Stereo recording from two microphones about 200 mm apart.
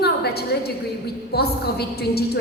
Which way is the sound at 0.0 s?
55° left (ahead or behind).